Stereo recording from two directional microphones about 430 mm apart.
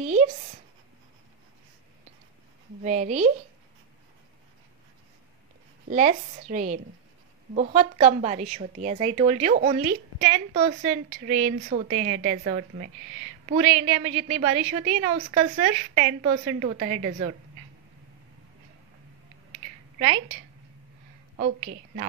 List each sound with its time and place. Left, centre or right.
0.0 s a sound: centre
2.8 s a woman's voice: centre
5.9 s a woman's voice: centre